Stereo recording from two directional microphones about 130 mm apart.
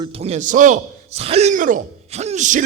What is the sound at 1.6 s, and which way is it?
Speech, 90° right.